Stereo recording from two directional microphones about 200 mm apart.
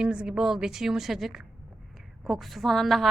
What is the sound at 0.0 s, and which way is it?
A woman's voice, 5° right (ahead or behind).